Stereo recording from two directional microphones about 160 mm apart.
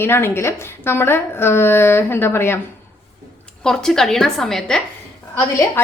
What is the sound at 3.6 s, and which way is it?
A woman's voice, 5° left (ahead or behind).